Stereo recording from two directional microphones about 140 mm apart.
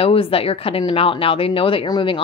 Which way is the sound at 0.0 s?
45° left (ahead or behind).